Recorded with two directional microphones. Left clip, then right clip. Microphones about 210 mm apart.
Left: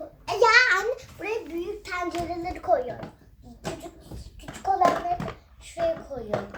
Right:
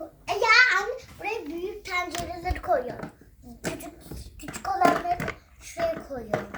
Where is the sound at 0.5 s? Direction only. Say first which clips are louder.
Even; 30° left (ahead or behind).